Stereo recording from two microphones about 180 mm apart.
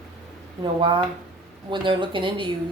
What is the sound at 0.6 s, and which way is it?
Speech, 25° right (ahead or behind).